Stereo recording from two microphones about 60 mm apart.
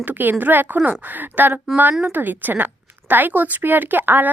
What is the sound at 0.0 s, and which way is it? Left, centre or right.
Speech, right.